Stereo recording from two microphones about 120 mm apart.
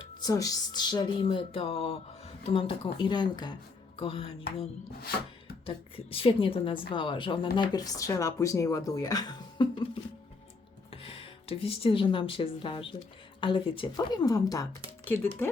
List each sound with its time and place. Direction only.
0.2 s speech: 30° left (ahead or behind)
3.9 s speech: 50° left (ahead or behind)
5.6 s a woman's voice: 50° left (ahead or behind)
10.9 s a woman's voice: 50° left (ahead or behind); by 14.7 s 30° left (ahead or behind)
15.0 s speech: 15° left (ahead or behind)